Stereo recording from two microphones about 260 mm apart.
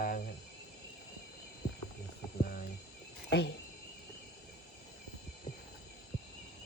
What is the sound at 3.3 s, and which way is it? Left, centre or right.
Speech, left.